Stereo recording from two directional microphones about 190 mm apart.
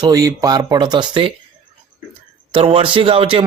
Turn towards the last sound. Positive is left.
turn(degrees=-30)  # may be behind; listen again after turning